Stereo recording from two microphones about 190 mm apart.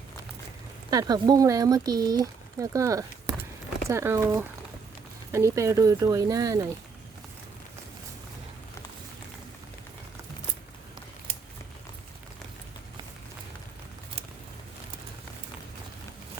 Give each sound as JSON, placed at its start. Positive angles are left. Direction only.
{"t": 0.9, "sound": "speech", "side_deg": -20}